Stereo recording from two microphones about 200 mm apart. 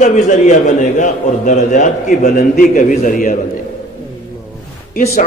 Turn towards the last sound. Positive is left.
turn(degrees=45)  # may be behind; listen again after turning